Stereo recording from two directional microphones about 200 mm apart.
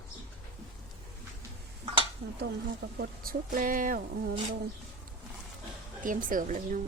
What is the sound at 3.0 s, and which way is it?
Speech, 45° right (ahead or behind).